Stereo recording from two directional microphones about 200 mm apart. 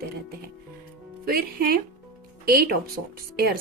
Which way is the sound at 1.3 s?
50° right (ahead or behind).